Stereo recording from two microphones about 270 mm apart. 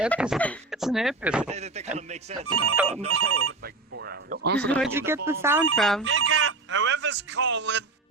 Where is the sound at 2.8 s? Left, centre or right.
Right.